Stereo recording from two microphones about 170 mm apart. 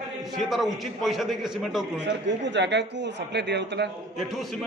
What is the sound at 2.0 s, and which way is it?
Speech, 90° right.